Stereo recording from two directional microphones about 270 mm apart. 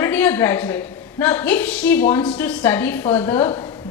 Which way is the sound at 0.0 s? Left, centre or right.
Centre.